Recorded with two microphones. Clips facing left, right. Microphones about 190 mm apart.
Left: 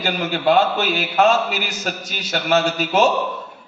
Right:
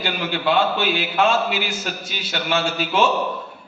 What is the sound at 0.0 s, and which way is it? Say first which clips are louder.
A man's voice: left 3 dB; 45° left (ahead or behind).